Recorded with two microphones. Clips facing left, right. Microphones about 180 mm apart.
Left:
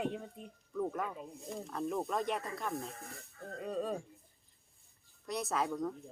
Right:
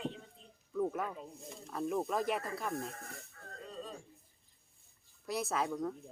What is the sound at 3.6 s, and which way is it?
Speech, 60° left (ahead or behind).